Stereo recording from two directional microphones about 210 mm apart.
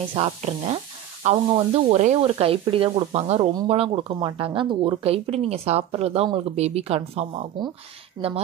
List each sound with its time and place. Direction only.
0.1 s speech: 30° right (ahead or behind)